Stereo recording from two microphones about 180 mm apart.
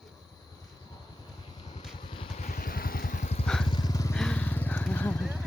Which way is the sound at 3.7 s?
20° left (ahead or behind).